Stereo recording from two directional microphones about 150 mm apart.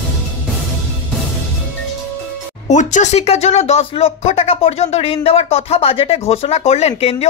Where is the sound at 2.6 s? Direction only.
50° left (ahead or behind).